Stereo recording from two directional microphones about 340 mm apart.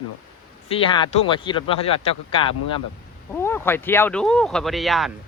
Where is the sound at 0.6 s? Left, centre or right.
Centre.